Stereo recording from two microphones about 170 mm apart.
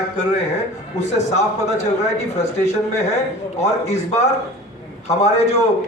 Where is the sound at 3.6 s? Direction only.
40° left (ahead or behind).